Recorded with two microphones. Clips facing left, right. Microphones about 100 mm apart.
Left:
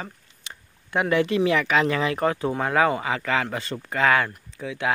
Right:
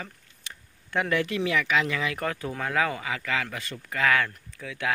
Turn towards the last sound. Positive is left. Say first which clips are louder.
# left 5 dB
turn(degrees=25)  # may be behind; listen again after turning